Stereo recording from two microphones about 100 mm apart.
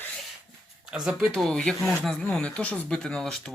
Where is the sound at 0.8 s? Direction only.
5° right (ahead or behind).